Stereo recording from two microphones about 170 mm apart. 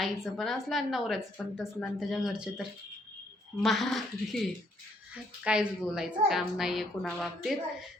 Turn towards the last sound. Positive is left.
turn(degrees=0)  # may be behind; listen again after turning